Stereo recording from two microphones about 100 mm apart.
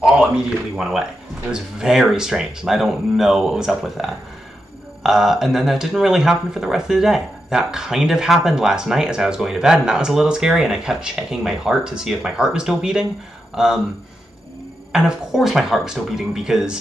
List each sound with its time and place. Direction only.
0.7 s speech: 5° right (ahead or behind)
14.9 s speech: 5° right (ahead or behind)